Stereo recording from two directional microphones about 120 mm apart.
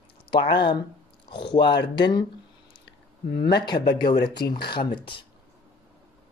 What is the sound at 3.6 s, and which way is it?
Speech, 35° left (ahead or behind).